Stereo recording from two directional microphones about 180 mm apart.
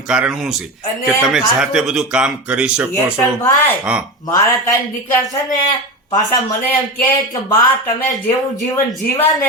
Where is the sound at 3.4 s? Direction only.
15° left (ahead or behind).